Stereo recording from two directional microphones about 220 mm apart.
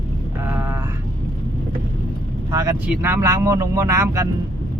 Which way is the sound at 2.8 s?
10° right (ahead or behind).